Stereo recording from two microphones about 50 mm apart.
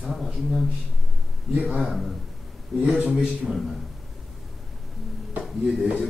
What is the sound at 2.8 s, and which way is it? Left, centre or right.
Speech, right.